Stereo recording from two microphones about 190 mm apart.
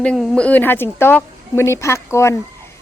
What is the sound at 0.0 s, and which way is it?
A woman's voice, 5° left (ahead or behind).